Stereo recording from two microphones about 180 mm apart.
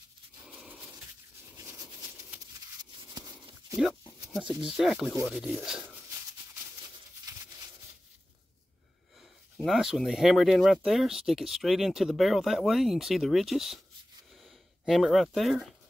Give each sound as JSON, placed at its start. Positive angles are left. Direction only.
{"t": 0.5, "sound": "a sound", "side_deg": -5}
{"t": 4.3, "sound": "speech", "side_deg": -5}
{"t": 9.6, "sound": "speech", "side_deg": 0}